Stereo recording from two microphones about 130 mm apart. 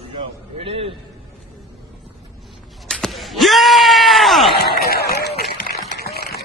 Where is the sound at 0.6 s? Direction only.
45° right (ahead or behind).